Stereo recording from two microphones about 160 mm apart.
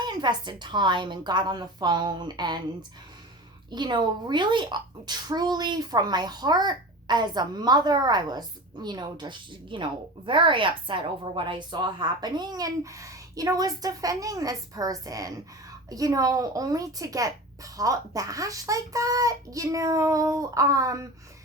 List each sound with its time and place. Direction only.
0.0 s a woman's voice: 25° right (ahead or behind)
3.7 s a woman's voice: 30° right (ahead or behind)